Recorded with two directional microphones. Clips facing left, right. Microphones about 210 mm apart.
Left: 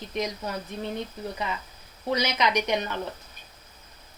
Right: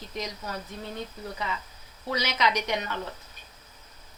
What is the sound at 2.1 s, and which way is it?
Speech, 20° left (ahead or behind).